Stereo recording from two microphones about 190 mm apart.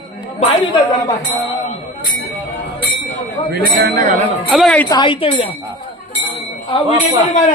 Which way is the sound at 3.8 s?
50° right (ahead or behind).